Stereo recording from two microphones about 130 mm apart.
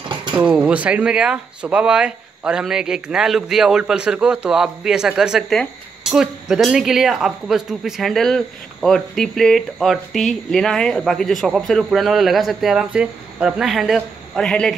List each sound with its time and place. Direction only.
0.4 s speech: 10° right (ahead or behind)